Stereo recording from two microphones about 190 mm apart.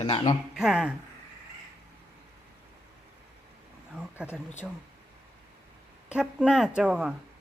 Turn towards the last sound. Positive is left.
turn(degrees=-5)  # may be behind; listen again after turning